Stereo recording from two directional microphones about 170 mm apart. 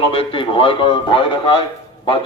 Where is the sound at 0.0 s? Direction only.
30° left (ahead or behind).